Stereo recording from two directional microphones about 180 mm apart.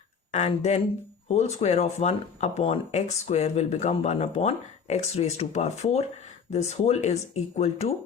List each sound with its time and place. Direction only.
0.3 s speech: 40° left (ahead or behind)